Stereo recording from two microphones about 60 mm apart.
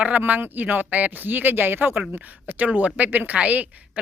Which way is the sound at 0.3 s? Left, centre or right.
Right.